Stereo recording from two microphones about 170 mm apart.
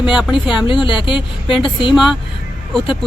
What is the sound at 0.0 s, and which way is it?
Speech, 5° right (ahead or behind).